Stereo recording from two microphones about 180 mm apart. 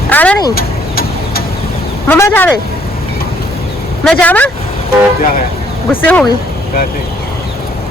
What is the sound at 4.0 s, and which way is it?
Speech, 5° left (ahead or behind).